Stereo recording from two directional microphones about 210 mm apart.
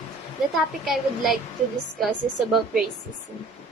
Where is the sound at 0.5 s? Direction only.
Centre (ahead or behind).